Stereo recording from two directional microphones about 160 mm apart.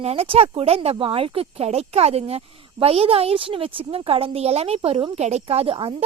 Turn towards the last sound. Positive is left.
turn(degrees=-35)  # may be behind; listen again after turning